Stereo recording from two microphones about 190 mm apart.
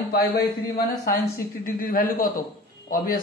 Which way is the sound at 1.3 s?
50° left (ahead or behind).